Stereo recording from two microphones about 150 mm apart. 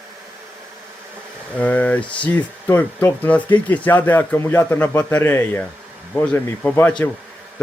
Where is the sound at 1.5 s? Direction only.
10° left (ahead or behind).